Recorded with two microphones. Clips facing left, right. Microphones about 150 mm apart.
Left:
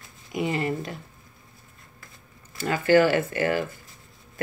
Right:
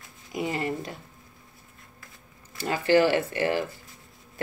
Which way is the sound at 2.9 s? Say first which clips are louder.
Left 2 dB; 50° left (ahead or behind).